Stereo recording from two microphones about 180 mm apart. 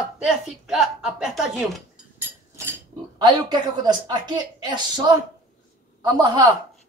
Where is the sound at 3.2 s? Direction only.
25° right (ahead or behind).